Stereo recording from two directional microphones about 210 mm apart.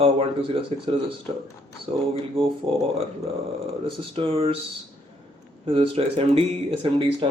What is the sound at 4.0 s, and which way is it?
Speech, 25° right (ahead or behind).